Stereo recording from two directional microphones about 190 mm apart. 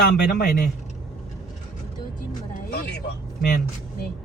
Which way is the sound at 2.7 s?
55° left (ahead or behind).